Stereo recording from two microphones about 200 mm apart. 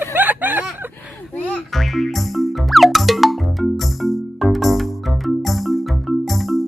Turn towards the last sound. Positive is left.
turn(degrees=0)  # may be behind; listen again after turning